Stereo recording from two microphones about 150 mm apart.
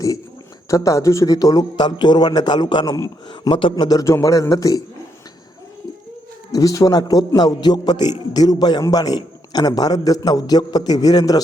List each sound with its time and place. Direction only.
0.7 s a man's voice: 20° left (ahead or behind)
6.5 s a man's voice: 25° left (ahead or behind)